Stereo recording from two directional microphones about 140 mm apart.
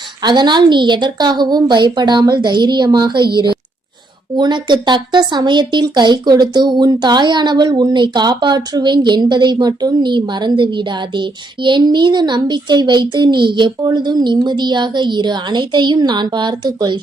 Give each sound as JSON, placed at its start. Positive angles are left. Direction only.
{"t": 0.2, "sound": "speech", "side_deg": -30}